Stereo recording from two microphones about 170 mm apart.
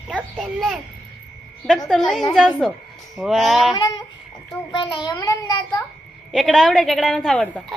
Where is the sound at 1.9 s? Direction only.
Centre (ahead or behind).